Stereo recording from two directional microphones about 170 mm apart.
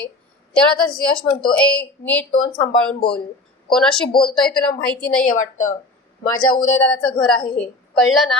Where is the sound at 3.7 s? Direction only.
5° left (ahead or behind).